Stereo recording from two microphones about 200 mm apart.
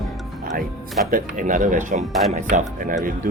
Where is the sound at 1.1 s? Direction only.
40° right (ahead or behind).